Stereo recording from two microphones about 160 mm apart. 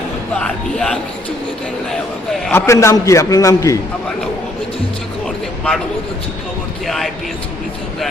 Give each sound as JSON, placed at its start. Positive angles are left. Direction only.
{"t": 0.3, "sound": "speech", "side_deg": 5}
{"t": 2.5, "sound": "a man's voice", "side_deg": 15}
{"t": 5.2, "sound": "a sound", "side_deg": 5}
{"t": 6.8, "sound": "speech", "side_deg": 0}